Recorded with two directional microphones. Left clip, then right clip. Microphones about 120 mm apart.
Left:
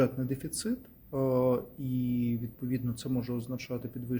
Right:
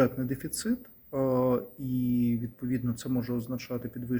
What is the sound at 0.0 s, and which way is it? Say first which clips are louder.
Speech: right 2 dB; 15° left (ahead or behind).